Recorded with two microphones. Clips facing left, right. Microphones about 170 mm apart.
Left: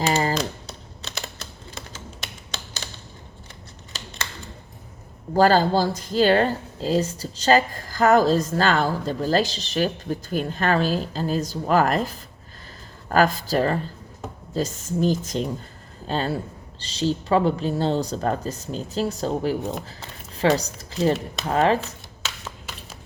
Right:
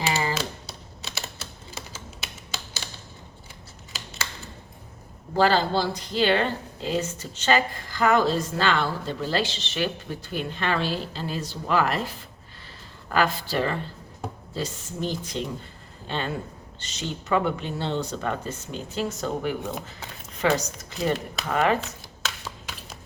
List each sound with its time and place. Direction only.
0.0 s typing: 45° left (ahead or behind)
1.9 s computer keyboard: 5° right (ahead or behind)
5.3 s speech: 45° left (ahead or behind)
22.2 s a sound: 5° left (ahead or behind)